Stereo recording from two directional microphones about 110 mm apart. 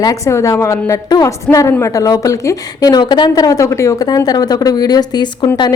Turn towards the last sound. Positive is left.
turn(degrees=40)  # may be behind; listen again after turning